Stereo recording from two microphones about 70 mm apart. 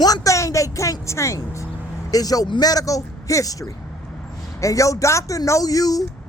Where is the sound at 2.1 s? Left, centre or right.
Left.